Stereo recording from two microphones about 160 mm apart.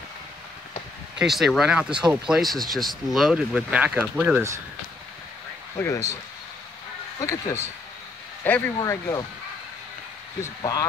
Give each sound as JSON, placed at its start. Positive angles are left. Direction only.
{"t": 1.2, "sound": "speech", "side_deg": 0}
{"t": 5.8, "sound": "speech", "side_deg": 20}
{"t": 7.2, "sound": "speech", "side_deg": 20}
{"t": 10.4, "sound": "speech", "side_deg": 20}